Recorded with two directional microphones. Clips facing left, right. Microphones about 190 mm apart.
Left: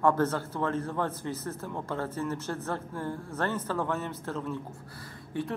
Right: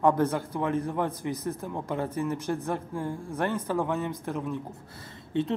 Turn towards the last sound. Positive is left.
turn(degrees=-25)  # may be behind; listen again after turning